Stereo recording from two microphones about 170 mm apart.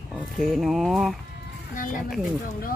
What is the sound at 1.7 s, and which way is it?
Speech, 50° left (ahead or behind).